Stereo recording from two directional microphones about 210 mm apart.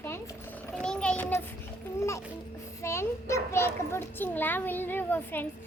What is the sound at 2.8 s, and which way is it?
Children playing, 15° left (ahead or behind).